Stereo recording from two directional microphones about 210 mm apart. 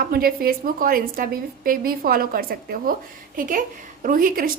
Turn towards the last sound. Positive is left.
turn(degrees=-40)  # may be behind; listen again after turning